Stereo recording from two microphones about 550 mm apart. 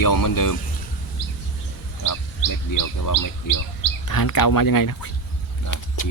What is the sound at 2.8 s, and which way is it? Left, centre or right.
Speech, left.